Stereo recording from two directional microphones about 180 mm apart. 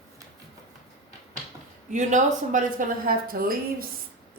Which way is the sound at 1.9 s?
45° right (ahead or behind).